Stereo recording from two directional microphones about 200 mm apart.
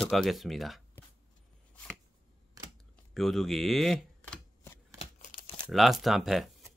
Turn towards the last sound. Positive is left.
turn(degrees=0)  # may be behind; listen again after turning